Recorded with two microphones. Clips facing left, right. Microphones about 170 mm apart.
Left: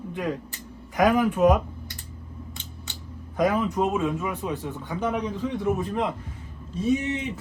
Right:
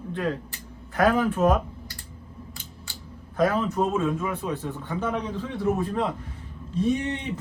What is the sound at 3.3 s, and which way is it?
Speech, 15° left (ahead or behind).